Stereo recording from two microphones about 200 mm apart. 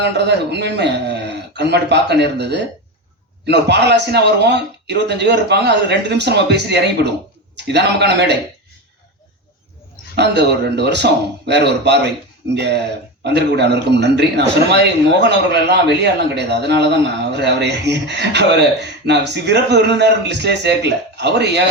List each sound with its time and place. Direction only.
0.0 s a man's voice: 55° right (ahead or behind)
10.2 s a man's voice: 55° right (ahead or behind)